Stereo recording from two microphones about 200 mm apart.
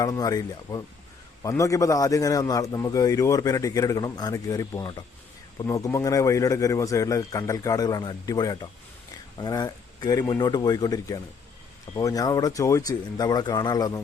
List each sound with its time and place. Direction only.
0.0 s a man's voice: 15° left (ahead or behind)